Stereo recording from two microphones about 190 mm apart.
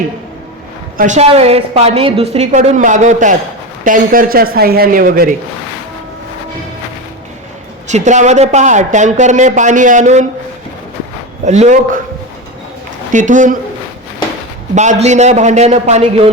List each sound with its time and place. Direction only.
0.9 s speech: 40° right (ahead or behind)
7.9 s speech: 40° right (ahead or behind)
11.4 s speech: 35° right (ahead or behind)
13.1 s speech: 40° right (ahead or behind)
14.8 s speech: 35° right (ahead or behind)